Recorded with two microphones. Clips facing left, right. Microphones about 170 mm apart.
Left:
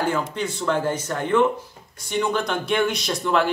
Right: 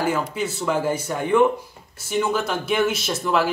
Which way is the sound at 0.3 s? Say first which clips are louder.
Even; 5° right (ahead or behind).